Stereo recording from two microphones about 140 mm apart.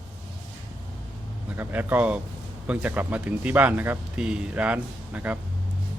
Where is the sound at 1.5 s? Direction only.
15° right (ahead or behind).